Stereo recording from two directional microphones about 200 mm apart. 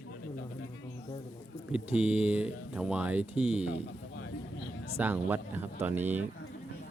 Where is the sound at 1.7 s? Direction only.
5° right (ahead or behind).